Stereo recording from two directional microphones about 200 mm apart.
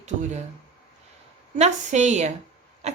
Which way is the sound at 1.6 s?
35° right (ahead or behind).